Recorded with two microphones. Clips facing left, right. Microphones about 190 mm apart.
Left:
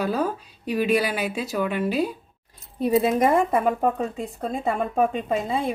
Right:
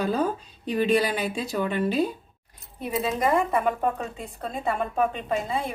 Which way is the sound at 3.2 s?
45° left (ahead or behind).